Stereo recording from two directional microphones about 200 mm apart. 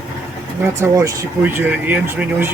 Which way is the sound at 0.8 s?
15° right (ahead or behind).